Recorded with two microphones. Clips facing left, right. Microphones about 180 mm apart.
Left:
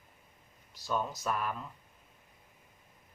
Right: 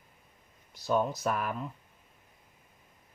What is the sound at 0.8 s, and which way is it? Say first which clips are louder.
Speech: right 5 dB; 60° right (ahead or behind).